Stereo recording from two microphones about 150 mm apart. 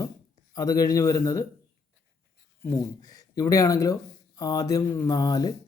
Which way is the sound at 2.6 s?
20° left (ahead or behind).